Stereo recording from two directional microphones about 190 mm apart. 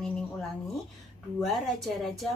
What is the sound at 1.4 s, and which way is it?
Speech, centre (ahead or behind).